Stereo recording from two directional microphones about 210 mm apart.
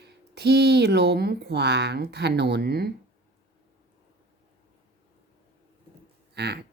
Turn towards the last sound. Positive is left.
turn(degrees=-50)  # may be behind; listen again after turning